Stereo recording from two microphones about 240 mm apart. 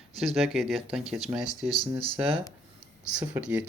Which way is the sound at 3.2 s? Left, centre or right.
Centre.